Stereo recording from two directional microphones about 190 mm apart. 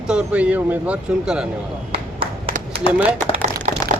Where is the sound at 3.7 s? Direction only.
40° right (ahead or behind).